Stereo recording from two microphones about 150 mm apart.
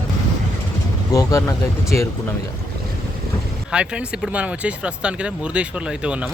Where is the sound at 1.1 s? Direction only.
20° left (ahead or behind).